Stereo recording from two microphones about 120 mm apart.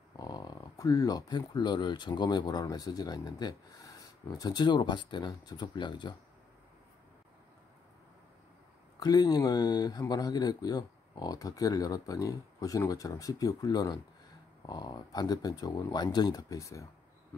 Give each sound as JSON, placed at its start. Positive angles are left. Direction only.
{"t": 0.2, "sound": "speech", "side_deg": 35}
{"t": 9.0, "sound": "speech", "side_deg": 35}